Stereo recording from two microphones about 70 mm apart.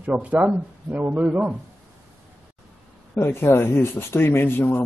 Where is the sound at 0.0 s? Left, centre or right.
Right.